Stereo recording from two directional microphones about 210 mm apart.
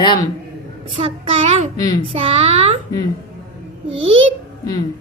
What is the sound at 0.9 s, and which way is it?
A child's voice, 25° right (ahead or behind).